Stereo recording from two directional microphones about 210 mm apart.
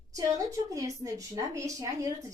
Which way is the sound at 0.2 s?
15° right (ahead or behind).